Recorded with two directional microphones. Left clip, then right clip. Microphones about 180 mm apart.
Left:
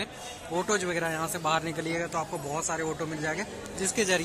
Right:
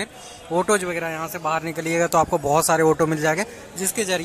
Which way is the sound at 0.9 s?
Centre (ahead or behind).